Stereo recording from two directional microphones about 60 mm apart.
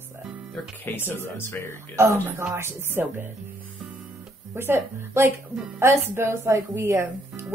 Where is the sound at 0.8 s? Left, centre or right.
Left.